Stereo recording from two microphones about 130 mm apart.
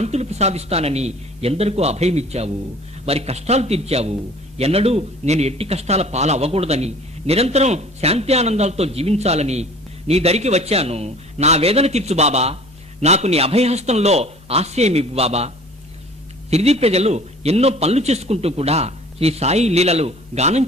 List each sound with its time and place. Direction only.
0.0 s a man's voice: 55° right (ahead or behind)